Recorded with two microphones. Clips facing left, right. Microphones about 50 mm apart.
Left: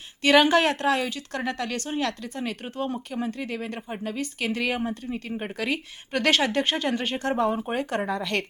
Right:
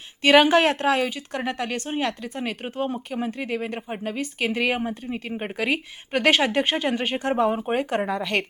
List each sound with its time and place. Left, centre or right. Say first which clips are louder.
0.2 s a woman's voice: right 2 dB; right